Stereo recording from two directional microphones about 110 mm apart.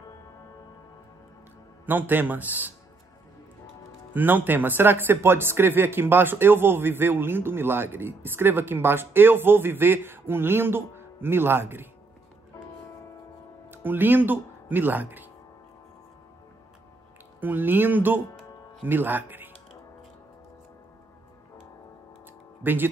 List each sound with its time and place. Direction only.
1.9 s a man's voice: 15° right (ahead or behind)
4.1 s speech: 15° right (ahead or behind)
13.7 s speech: 20° right (ahead or behind)
17.4 s a man's voice: 15° right (ahead or behind)
22.6 s speech: 20° right (ahead or behind)